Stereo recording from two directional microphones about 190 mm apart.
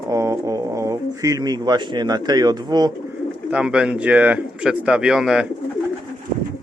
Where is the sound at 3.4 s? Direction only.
5° right (ahead or behind).